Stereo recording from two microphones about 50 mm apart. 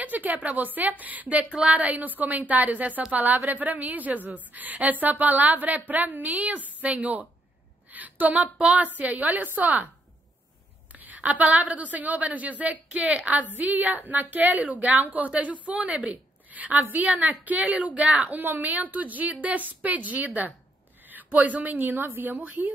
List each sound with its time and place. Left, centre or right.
0.0 s a woman's voice: right
10.9 s a woman's voice: right